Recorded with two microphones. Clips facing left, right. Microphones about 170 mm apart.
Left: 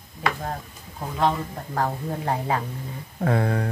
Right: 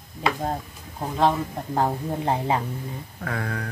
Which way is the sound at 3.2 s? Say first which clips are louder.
Left 7 dB; 30° left (ahead or behind).